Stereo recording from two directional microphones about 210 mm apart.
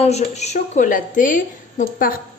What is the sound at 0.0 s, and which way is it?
A woman's voice, 30° left (ahead or behind).